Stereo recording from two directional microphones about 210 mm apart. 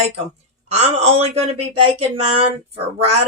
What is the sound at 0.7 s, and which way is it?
Speech, 30° right (ahead or behind).